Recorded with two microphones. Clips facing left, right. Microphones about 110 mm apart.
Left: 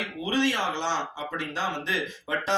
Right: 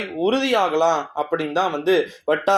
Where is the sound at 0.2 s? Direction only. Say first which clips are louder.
Right 8 dB; 80° right; by 1.5 s 50° right (ahead or behind).